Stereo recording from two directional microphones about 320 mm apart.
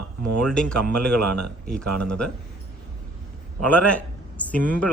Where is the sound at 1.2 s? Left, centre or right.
Right.